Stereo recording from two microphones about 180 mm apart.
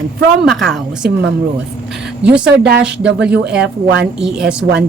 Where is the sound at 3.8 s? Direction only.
70° right (ahead or behind).